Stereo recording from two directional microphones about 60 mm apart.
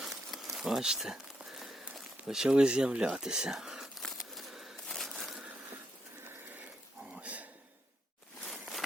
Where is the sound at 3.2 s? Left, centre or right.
Centre.